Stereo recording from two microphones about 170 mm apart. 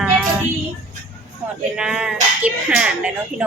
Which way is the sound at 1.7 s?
5° right (ahead or behind).